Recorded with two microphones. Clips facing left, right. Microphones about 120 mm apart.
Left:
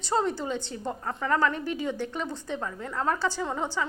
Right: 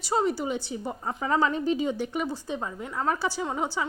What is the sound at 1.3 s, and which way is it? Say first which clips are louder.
A woman's voice: right 2 dB; 20° right (ahead or behind).